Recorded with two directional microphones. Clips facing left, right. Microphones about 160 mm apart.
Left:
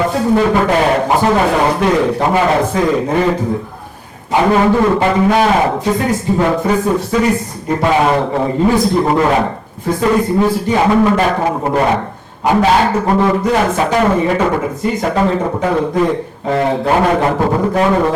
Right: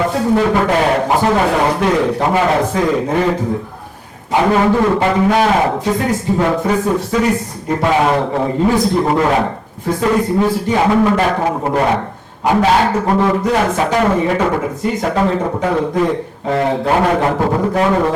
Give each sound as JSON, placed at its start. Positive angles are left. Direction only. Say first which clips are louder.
{"t": 0.0, "sound": "a man's voice", "louder": "left 1 dB", "side_deg": 20}
{"t": 10.7, "sound": "a man's voice", "louder": "left 1 dB", "side_deg": 20}